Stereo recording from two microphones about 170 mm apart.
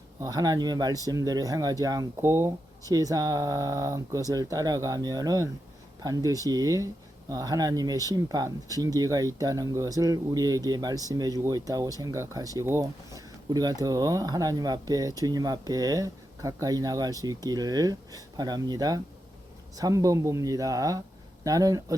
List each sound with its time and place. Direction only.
0.2 s speech: 20° right (ahead or behind)